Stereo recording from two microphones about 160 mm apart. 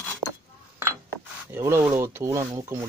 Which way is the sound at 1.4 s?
15° right (ahead or behind).